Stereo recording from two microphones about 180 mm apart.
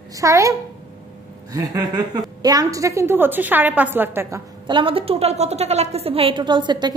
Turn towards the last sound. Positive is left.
turn(degrees=-25)  # may be behind; listen again after turning